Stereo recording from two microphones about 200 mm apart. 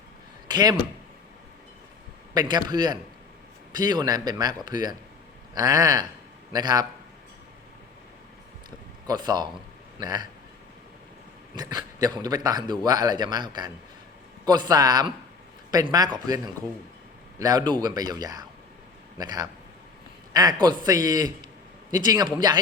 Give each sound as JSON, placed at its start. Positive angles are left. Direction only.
{"t": 0.4, "sound": "speech", "side_deg": -20}
{"t": 2.3, "sound": "a man's voice", "side_deg": -20}
{"t": 9.0, "sound": "speech", "side_deg": -20}
{"t": 11.5, "sound": "speech", "side_deg": -20}
{"t": 17.4, "sound": "speech", "side_deg": -20}